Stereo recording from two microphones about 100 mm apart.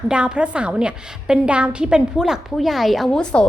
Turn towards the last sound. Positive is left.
turn(degrees=10)  # may be behind; listen again after turning